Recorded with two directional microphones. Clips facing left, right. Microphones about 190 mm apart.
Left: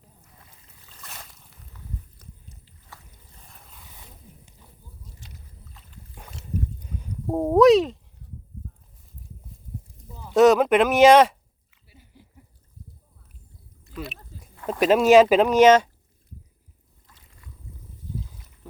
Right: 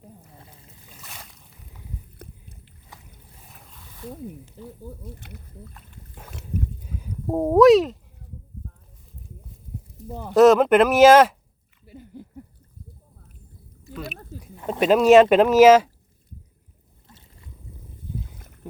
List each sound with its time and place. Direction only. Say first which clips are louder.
0.3 s boat: right 7 dB; 30° right (ahead or behind)
0.9 s boat: even; 5° right (ahead or behind)
2.1 s boat: right 6 dB; 60° right (ahead or behind)
3.4 s dog: right 1 dB; centre (ahead or behind)
4.9 s speech: right 10 dB; 60° right (ahead or behind)
6.8 s a sound: right 1 dB; 5° right (ahead or behind)
10.1 s speech: right 9 dB; 60° right (ahead or behind)
10.3 s speech: right 2 dB; centre (ahead or behind)
11.9 s a sound: right 13 dB; 50° right (ahead or behind)
13.8 s chewing: right 1 dB; centre (ahead or behind)
14.7 s speech: right 1 dB; centre (ahead or behind)
17.1 s boat: right 3 dB; 25° right (ahead or behind)
18.0 s boat: right 1 dB; 55° right (ahead or behind)
18.6 s a sound: right 6 dB; 20° right (ahead or behind)